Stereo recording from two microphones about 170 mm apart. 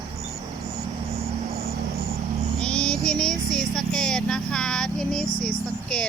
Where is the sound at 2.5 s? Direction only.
5° left (ahead or behind).